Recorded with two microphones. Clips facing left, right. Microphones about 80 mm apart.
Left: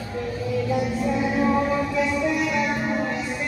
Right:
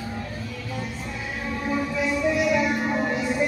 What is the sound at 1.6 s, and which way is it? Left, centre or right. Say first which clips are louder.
Music: left 2 dB; centre.